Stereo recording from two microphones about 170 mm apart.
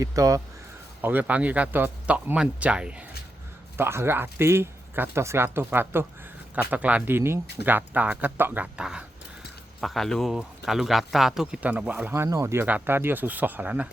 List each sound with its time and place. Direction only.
0.0 s speech: 20° right (ahead or behind)